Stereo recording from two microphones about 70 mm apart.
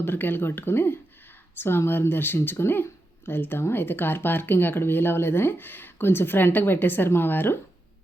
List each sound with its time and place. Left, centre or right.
0.0 s speech: left